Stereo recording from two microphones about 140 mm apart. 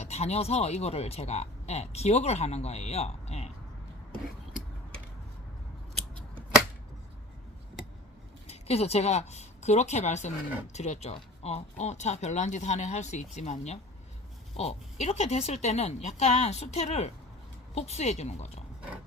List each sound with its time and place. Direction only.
0.0 s speech: 50° left (ahead or behind)
8.4 s a woman's voice: 50° left (ahead or behind)